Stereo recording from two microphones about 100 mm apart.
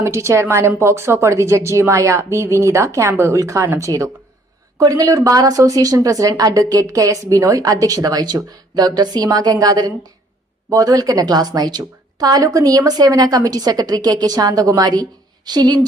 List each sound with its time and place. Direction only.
0.0 s a woman's voice: 30° right (ahead or behind); by 15.9 s 45° right (ahead or behind)